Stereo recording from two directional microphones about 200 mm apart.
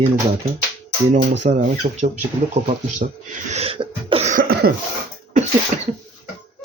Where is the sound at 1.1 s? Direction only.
35° right (ahead or behind).